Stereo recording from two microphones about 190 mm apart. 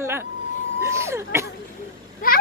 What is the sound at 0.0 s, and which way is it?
Vehicle, 15° right (ahead or behind).